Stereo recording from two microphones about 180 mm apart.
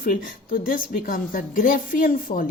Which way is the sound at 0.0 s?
50° left (ahead or behind).